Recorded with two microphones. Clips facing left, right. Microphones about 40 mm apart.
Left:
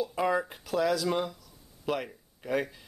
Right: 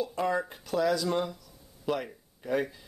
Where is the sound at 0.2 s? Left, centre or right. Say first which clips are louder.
Left 2 dB; centre.